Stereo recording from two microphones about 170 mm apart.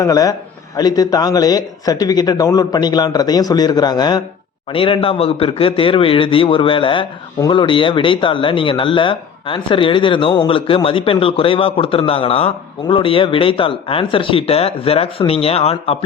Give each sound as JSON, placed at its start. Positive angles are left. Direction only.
{"t": 0.0, "sound": "a man's voice", "side_deg": 20}